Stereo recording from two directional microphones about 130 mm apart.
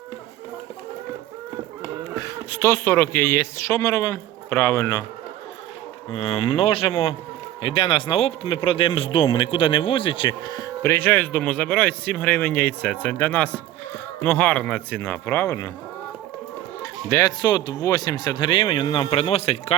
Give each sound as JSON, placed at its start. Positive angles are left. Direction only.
{"t": 2.1, "sound": "speech", "side_deg": 25}
{"t": 6.1, "sound": "speech", "side_deg": 45}
{"t": 16.8, "sound": "speech", "side_deg": 25}
{"t": 19.2, "sound": "speech", "side_deg": 50}